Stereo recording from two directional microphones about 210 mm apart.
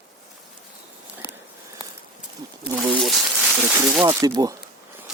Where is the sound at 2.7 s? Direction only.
Centre (ahead or behind).